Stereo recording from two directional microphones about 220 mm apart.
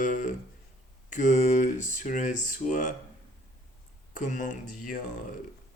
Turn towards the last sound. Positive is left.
turn(degrees=35)  # may be behind; listen again after turning